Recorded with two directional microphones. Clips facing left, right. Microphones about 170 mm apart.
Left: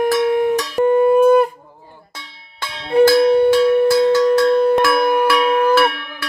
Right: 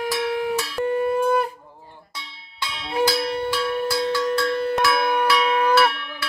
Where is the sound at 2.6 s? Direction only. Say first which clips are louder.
Left 10 dB; 50° left (ahead or behind).